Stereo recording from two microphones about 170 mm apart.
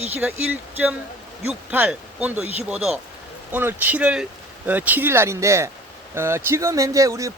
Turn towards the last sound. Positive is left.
turn(degrees=-20)  # may be behind; listen again after turning